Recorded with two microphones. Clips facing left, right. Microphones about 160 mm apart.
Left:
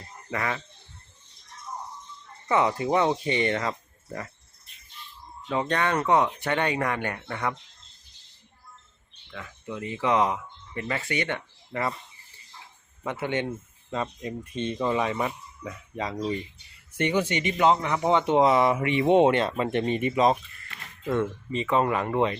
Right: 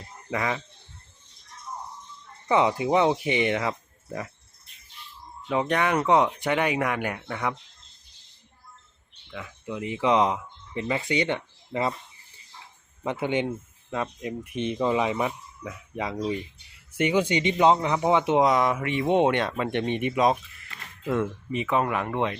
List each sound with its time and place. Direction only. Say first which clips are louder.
0.3 s speech: right 2 dB; 15° right (ahead or behind)
2.5 s speech: right 2 dB; 15° right (ahead or behind)
5.5 s speech: right 2 dB; 10° right (ahead or behind)
9.3 s speech: right 2 dB; 15° right (ahead or behind)
13.0 s speech: right 2 dB; 15° right (ahead or behind)
13.9 s speech: right 1 dB; 5° right (ahead or behind)
18.4 s speech: left 1 dB; 5° left (ahead or behind)